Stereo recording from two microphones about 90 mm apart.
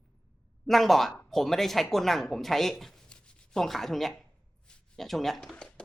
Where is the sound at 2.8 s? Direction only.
5° left (ahead or behind).